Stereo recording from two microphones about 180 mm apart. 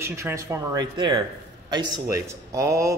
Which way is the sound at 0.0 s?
15° right (ahead or behind).